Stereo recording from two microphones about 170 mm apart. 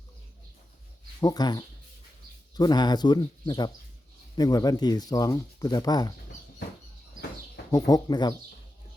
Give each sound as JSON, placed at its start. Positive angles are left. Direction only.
{"t": 1.2, "sound": "speech", "side_deg": 25}
{"t": 7.7, "sound": "speech", "side_deg": 20}